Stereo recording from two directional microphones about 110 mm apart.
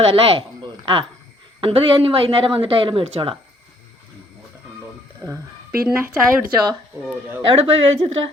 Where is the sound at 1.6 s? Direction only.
55° right (ahead or behind).